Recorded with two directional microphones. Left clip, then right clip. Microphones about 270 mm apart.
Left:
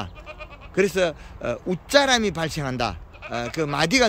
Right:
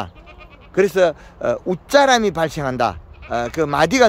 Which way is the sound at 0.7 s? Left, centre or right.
Centre.